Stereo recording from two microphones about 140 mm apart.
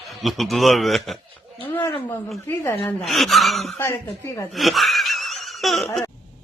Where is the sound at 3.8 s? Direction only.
20° left (ahead or behind).